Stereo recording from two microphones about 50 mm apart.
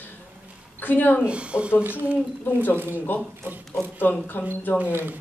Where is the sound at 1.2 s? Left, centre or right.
Right.